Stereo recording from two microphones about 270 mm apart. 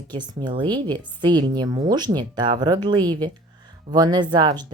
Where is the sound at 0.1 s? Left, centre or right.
Centre.